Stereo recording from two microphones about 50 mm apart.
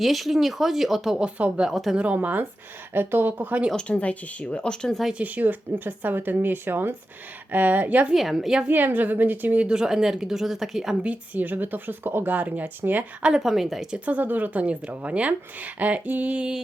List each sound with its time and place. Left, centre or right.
0.0 s speech: centre
1.1 s speech: centre
1.7 s speech: centre
2.0 s speech: right
3.8 s speech: left
5.1 s speech: right
8.1 s speech: centre
8.6 s speech: right
9.6 s speech: centre
11.0 s speech: right
11.4 s speech: right
13.2 s speech: centre
13.9 s speech: right